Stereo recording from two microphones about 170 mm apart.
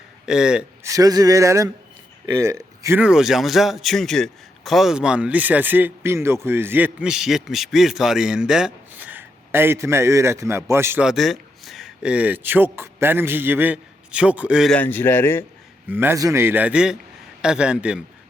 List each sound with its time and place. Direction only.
0.3 s a man's voice: 5° right (ahead or behind)
0.9 s speech: 20° right (ahead or behind)
3.0 s a man's voice: 5° right (ahead or behind)
14.7 s a man's voice: 10° left (ahead or behind)
15.9 s a man's voice: 15° right (ahead or behind)